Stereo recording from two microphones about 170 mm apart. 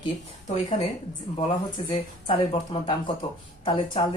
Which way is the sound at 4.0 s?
30° left (ahead or behind).